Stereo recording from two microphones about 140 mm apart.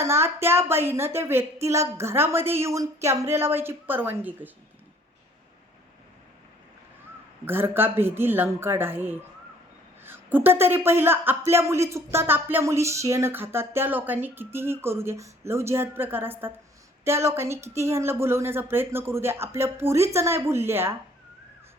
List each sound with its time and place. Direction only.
0.0 s speech: 20° right (ahead or behind)
7.4 s speech: 15° right (ahead or behind)